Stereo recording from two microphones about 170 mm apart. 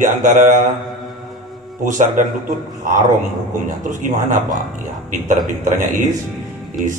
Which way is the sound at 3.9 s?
45° right (ahead or behind).